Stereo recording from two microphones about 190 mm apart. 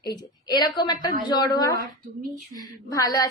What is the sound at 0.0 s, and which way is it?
A woman's voice, 20° left (ahead or behind).